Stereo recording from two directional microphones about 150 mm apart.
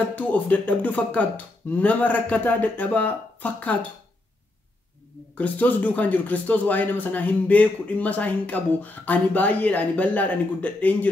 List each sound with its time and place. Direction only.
0.0 s speech: 10° left (ahead or behind)
5.4 s speech: 10° left (ahead or behind)